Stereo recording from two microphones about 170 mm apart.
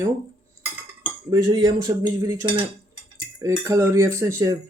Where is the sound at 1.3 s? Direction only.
25° right (ahead or behind).